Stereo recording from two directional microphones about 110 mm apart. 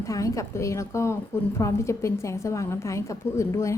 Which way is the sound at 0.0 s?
30° left (ahead or behind).